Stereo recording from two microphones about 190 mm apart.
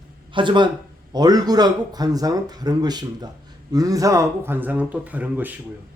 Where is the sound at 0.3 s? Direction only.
25° right (ahead or behind); by 5.5 s 10° right (ahead or behind).